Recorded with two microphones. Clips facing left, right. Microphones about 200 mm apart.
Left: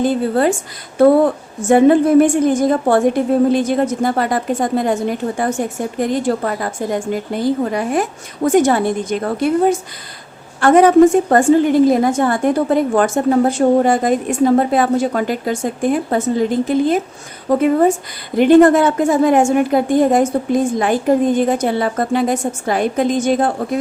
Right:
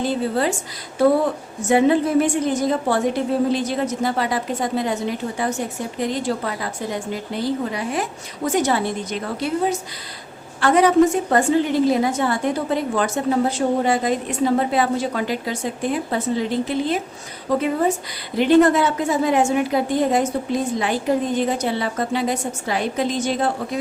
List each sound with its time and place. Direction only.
0.0 s a woman's voice: 50° left (ahead or behind)